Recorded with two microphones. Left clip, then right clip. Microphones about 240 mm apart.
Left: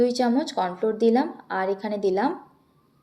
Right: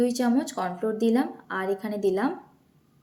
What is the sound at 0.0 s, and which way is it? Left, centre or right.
Speech, centre.